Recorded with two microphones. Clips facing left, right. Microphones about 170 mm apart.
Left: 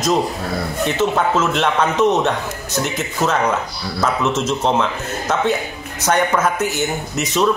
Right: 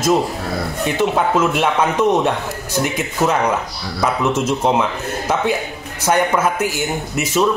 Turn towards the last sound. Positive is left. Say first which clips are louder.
# right 1 dB
turn(degrees=-10)  # may be behind; listen again after turning